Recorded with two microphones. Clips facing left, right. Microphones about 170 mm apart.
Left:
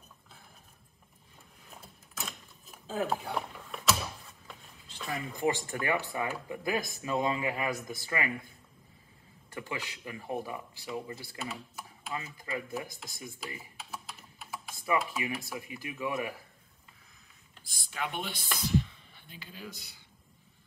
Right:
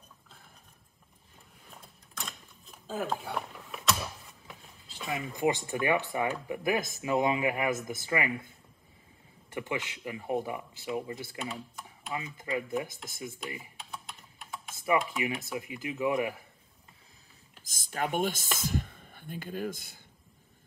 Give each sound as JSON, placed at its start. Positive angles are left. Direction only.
{"t": 1.7, "sound": "a sound", "side_deg": 5}
{"t": 5.1, "sound": "speech", "side_deg": -20}
{"t": 9.5, "sound": "speech", "side_deg": -20}
{"t": 11.3, "sound": "speech", "side_deg": 5}
{"t": 12.4, "sound": "speech", "side_deg": -20}
{"t": 13.7, "sound": "typing", "side_deg": 5}
{"t": 14.9, "sound": "speech", "side_deg": -20}
{"t": 17.6, "sound": "speech", "side_deg": -45}